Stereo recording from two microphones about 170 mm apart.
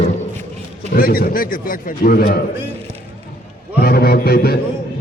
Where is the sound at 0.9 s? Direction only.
60° left (ahead or behind).